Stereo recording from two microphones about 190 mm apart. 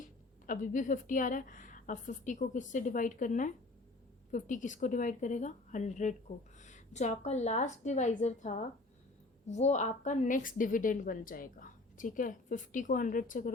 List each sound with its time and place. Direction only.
0.0 s a woman's voice: 45° left (ahead or behind)